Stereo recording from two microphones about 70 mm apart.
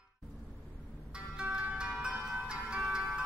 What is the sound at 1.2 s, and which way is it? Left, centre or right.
Music, centre.